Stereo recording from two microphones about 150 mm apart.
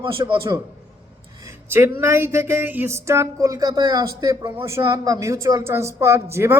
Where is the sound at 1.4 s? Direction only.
20° right (ahead or behind).